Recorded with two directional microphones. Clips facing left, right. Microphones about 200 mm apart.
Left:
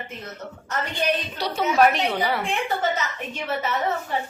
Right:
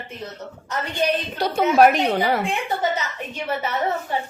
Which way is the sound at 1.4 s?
50° right (ahead or behind).